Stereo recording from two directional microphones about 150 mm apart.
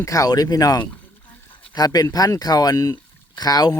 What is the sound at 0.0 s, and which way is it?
Speech, 25° left (ahead or behind).